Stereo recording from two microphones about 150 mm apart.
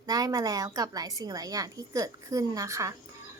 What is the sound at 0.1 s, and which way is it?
A woman's voice, 25° right (ahead or behind).